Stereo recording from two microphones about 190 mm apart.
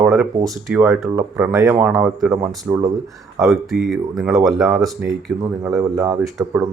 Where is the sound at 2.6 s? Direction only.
20° right (ahead or behind).